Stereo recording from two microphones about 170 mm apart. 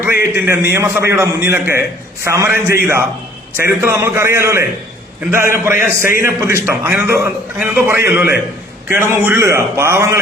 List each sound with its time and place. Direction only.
0.0 s a man's voice: 15° right (ahead or behind)
5.7 s a man's voice: 55° left (ahead or behind)
6.2 s a man's voice: 15° right (ahead or behind)